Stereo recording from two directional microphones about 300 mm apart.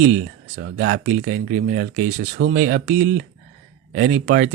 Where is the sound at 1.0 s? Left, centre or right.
Right.